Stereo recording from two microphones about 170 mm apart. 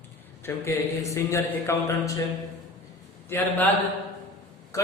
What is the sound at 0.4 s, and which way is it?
Speech, 15° left (ahead or behind).